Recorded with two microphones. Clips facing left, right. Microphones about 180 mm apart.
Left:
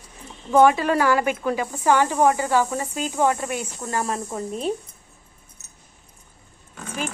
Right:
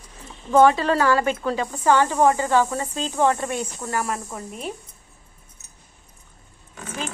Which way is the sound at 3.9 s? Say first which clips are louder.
Left 3 dB; 25° left (ahead or behind).